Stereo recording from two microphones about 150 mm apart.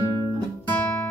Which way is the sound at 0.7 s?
15° left (ahead or behind).